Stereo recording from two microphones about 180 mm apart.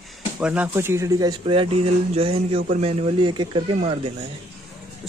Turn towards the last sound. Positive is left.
turn(degrees=-30)  # may be behind; listen again after turning